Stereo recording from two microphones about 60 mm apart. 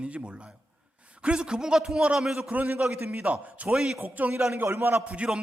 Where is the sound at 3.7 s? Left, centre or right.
Centre.